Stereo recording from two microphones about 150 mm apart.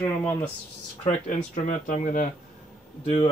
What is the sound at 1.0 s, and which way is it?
Speech, 50° left (ahead or behind).